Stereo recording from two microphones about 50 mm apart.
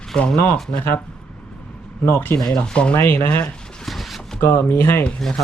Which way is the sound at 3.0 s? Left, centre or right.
Left.